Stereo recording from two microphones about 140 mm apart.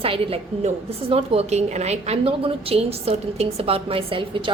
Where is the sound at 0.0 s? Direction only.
40° right (ahead or behind).